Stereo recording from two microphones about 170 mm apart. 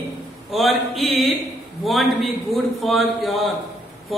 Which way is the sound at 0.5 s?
Centre (ahead or behind).